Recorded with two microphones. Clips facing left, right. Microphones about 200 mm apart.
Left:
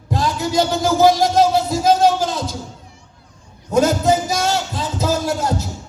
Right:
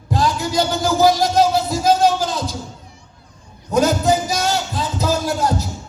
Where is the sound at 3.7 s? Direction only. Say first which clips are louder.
Left 1 dB; 25° left (ahead or behind).